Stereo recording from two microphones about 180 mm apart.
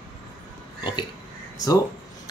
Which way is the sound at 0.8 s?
25° left (ahead or behind).